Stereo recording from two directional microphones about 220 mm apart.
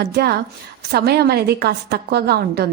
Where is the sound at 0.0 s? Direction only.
50° right (ahead or behind).